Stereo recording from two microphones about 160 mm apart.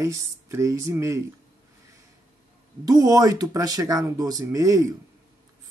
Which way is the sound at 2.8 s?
25° right (ahead or behind).